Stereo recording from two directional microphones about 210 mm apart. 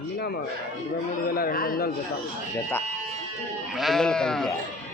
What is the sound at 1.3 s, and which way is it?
Speech, 45° left (ahead or behind).